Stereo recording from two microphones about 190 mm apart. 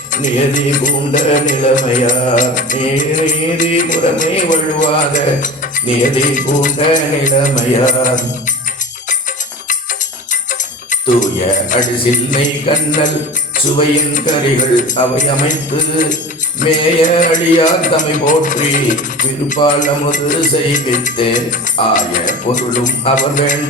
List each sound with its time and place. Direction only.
0.1 s mantra: 40° left (ahead or behind)
11.1 s mantra: 45° left (ahead or behind)
12.7 s music: 40° left (ahead or behind)
13.9 s mantra: 45° left (ahead or behind)
16.6 s mantra: 45° left (ahead or behind)